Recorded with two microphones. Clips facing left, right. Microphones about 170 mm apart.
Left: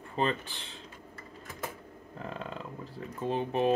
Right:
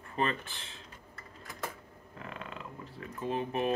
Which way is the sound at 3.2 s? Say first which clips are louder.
Left 3 dB; 30° left (ahead or behind).